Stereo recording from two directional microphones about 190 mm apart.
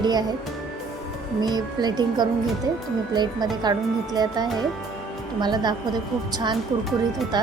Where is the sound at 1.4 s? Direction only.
20° right (ahead or behind).